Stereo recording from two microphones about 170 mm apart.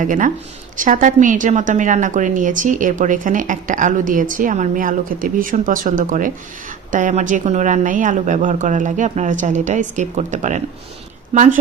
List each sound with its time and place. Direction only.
0.0 s a woman's voice: 50° right (ahead or behind)